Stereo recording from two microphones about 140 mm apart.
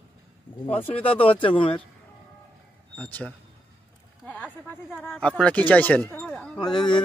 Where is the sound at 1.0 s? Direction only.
40° left (ahead or behind).